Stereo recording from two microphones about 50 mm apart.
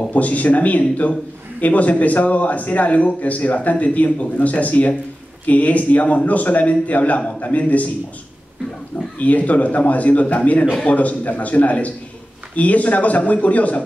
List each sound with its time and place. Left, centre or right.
0.1 s a man's voice: left
9.2 s a man's voice: left